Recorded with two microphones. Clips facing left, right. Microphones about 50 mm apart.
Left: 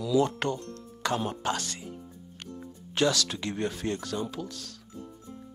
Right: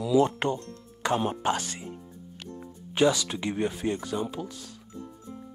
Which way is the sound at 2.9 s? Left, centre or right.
Centre.